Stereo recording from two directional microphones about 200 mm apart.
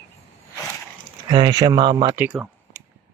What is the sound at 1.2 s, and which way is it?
Speech, 25° right (ahead or behind).